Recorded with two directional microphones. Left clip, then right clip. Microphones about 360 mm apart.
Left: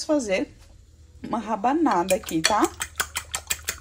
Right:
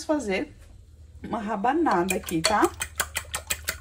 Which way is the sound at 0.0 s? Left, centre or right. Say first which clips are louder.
Left 3 dB; left.